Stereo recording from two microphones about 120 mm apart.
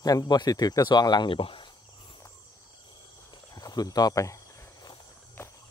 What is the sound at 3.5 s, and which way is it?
Speech, 30° left (ahead or behind).